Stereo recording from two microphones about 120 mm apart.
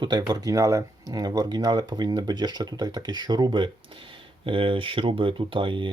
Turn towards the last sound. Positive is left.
turn(degrees=-45)  # may be behind; listen again after turning